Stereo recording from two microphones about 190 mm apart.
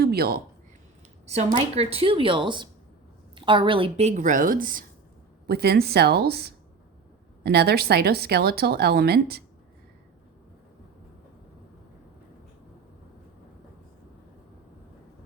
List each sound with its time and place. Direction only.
0.0 s speech: 55° right (ahead or behind)
1.3 s a woman's voice: 35° right (ahead or behind); by 9.4 s 55° right (ahead or behind)